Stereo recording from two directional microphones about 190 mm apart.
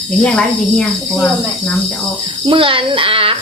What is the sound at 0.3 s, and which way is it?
Speech, 5° left (ahead or behind).